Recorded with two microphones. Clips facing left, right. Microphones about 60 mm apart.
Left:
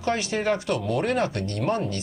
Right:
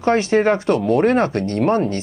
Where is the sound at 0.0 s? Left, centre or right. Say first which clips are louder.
Right 9 dB; right.